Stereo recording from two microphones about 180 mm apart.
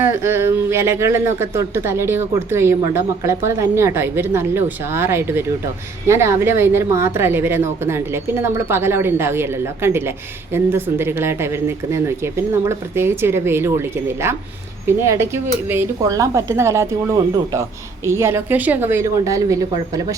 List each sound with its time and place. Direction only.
0.0 s speech: 15° right (ahead or behind)